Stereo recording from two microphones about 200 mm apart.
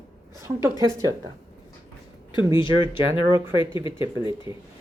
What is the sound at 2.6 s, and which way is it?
Speech, 25° left (ahead or behind).